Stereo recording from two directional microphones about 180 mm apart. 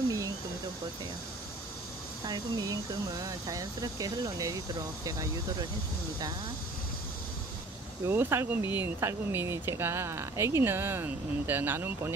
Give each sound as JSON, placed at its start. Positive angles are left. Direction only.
{"t": 2.2, "sound": "speech", "side_deg": -20}
{"t": 8.1, "sound": "speech", "side_deg": -15}